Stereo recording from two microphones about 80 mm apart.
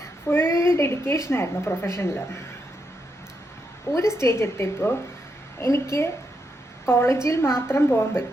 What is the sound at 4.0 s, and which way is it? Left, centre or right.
A woman's voice, left.